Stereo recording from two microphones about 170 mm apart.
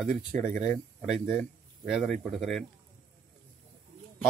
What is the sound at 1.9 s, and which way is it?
Speech, centre (ahead or behind).